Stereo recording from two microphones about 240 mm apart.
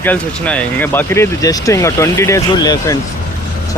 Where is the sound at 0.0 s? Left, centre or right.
Centre.